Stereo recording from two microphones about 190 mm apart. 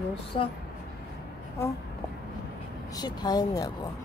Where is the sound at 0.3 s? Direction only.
25° left (ahead or behind).